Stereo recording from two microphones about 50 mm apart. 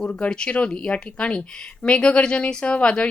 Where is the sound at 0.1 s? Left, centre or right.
Left.